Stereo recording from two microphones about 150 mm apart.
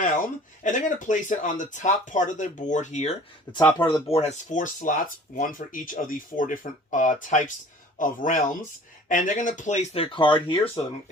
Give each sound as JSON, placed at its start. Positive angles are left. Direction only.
{"t": 0.0, "sound": "speech", "side_deg": 60}
{"t": 3.5, "sound": "speech", "side_deg": 30}
{"t": 4.2, "sound": "speech", "side_deg": 55}
{"t": 10.0, "sound": "speech", "side_deg": 35}